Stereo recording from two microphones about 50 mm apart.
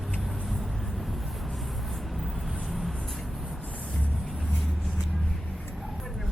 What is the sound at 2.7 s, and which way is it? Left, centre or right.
Vehicle, centre.